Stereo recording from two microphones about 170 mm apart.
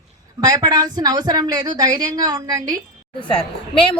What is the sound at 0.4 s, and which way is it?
A woman's voice, 20° right (ahead or behind).